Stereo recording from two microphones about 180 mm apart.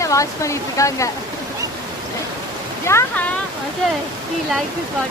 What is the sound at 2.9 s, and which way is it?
Speech, 15° left (ahead or behind).